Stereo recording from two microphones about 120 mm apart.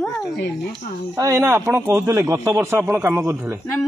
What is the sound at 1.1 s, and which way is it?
A man's voice, 25° right (ahead or behind).